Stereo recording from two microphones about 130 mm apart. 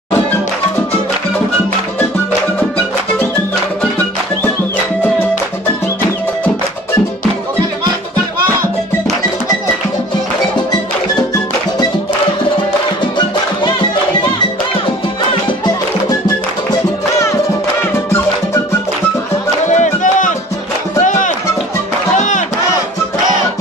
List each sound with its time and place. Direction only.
19.7 s music: 70° left (ahead or behind)